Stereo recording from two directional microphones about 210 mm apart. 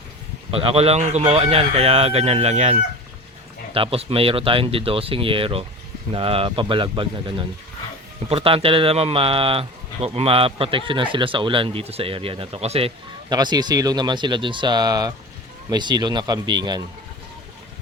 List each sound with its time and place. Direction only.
0.5 s speech: 25° right (ahead or behind)